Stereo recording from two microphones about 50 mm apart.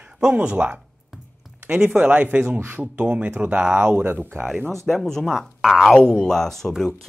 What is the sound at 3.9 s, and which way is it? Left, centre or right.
Speech, right.